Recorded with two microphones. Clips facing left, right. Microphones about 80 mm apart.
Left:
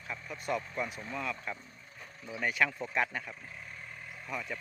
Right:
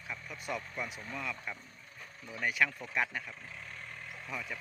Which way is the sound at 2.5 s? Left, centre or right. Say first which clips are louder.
Left 1 dB; centre.